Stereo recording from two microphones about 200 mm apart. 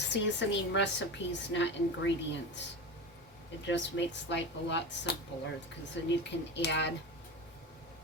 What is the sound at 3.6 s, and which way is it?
Speech, 60° left (ahead or behind).